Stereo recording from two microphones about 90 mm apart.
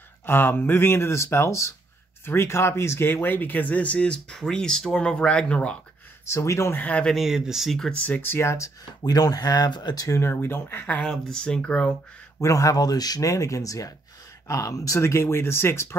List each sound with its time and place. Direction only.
0.3 s speech: 25° left (ahead or behind)
6.2 s speech: 30° left (ahead or behind)
6.8 s speech: 15° left (ahead or behind)
7.2 s speech: 5° right (ahead or behind)
8.0 s speech: 20° left (ahead or behind)
10.3 s speech: 25° left (ahead or behind)
11.1 s speech: 5° left (ahead or behind)
12.4 s speech: 40° left (ahead or behind)